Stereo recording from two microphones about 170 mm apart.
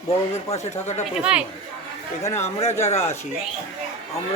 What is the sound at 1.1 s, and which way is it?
Speech, 5° right (ahead or behind).